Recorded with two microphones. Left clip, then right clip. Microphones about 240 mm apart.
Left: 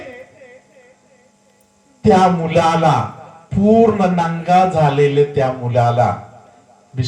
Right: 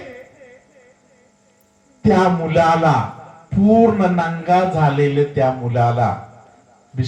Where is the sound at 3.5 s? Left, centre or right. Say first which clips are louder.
Left 1 dB; left.